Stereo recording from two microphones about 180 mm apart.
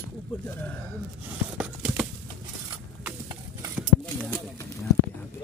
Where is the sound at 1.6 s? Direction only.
5° right (ahead or behind).